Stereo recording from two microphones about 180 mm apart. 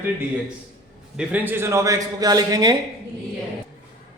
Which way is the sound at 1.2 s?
10° right (ahead or behind).